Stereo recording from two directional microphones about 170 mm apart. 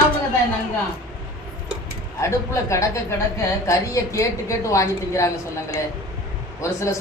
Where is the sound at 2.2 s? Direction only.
15° left (ahead or behind).